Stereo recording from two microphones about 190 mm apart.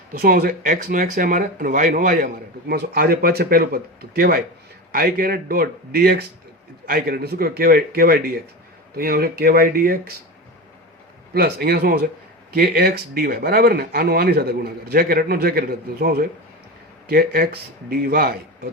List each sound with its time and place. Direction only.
0.1 s speech: 50° right (ahead or behind)
11.3 s speech: 55° right (ahead or behind)